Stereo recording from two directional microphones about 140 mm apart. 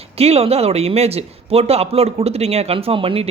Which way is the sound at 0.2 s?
45° right (ahead or behind).